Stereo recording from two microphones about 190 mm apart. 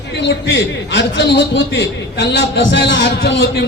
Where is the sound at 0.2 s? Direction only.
70° left (ahead or behind).